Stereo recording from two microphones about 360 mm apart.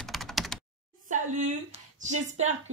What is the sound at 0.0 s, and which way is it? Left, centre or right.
Computer keyboard, centre.